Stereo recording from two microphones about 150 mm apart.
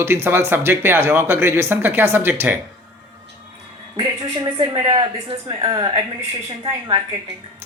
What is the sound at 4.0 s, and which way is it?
Speech, 25° right (ahead or behind).